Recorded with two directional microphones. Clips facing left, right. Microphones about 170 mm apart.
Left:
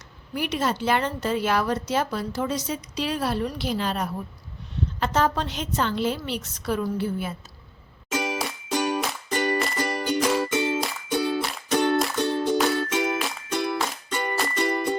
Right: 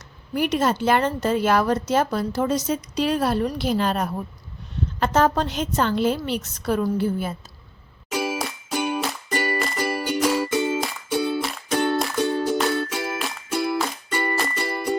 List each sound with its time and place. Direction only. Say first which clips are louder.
0.3 s a woman's voice: right 5 dB; 50° right (ahead or behind)
8.1 s music: right 2 dB; 5° right (ahead or behind)